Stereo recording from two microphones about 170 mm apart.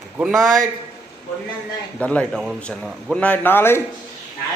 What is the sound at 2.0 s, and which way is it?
A man's voice, 5° left (ahead or behind).